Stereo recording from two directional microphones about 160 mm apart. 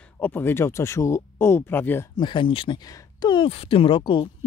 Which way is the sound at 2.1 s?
30° left (ahead or behind).